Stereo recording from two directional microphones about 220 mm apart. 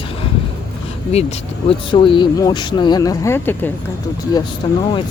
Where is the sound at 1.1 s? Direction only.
30° left (ahead or behind).